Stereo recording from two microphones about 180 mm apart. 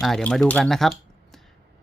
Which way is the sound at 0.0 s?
5° left (ahead or behind).